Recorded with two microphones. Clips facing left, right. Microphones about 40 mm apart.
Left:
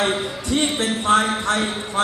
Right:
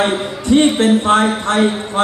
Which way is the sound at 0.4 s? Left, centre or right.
Right.